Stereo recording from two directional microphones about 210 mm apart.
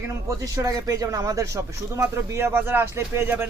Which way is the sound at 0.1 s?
15° right (ahead or behind).